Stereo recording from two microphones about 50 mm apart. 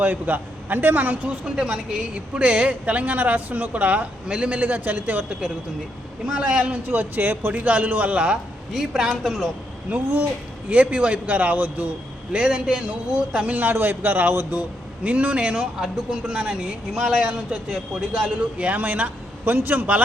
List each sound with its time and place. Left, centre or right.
0.0 s a man's voice: right
1.5 s speech: right
6.2 s speech: centre
6.8 s a man's voice: right
8.7 s speech: centre
9.9 s speech: right
12.3 s speech: right
13.6 s a man's voice: right
15.0 s speech: right
18.6 s a man's voice: right